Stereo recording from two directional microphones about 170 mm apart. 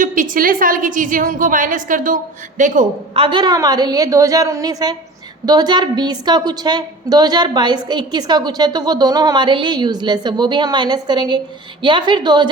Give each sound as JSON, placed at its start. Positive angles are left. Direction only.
{"t": 0.0, "sound": "a woman's voice", "side_deg": -50}
{"t": 3.2, "sound": "a woman's voice", "side_deg": -30}